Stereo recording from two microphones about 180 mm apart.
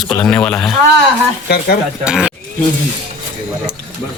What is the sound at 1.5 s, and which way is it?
Stir, 60° left (ahead or behind).